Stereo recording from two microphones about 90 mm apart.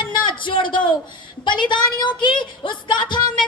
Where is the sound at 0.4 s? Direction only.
65° left (ahead or behind).